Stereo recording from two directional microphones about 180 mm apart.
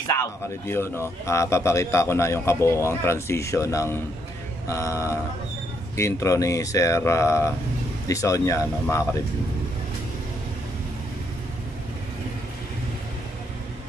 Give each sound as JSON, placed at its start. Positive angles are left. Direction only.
{"t": 0.0, "sound": "a man's voice", "side_deg": 15}